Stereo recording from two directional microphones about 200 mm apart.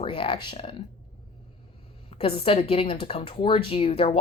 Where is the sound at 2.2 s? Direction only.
30° left (ahead or behind).